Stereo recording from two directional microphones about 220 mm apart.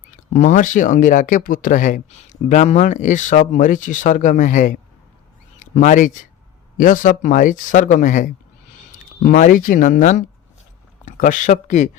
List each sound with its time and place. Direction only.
0.3 s speech: 35° left (ahead or behind)
5.5 s a sound: 35° left (ahead or behind)
6.7 s speech: 35° left (ahead or behind)